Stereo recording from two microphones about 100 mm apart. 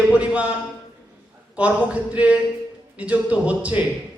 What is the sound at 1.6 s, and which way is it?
A man's voice, 15° right (ahead or behind).